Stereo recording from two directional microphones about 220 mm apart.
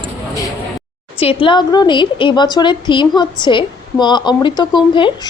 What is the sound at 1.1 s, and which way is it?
A woman's voice, 25° left (ahead or behind).